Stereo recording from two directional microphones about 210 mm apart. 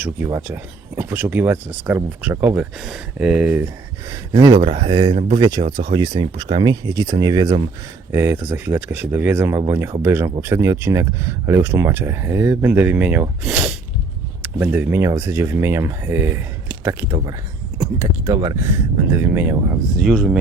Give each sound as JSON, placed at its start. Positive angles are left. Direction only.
{"t": 0.0, "sound": "speech", "side_deg": -15}
{"t": 4.1, "sound": "speech", "side_deg": -20}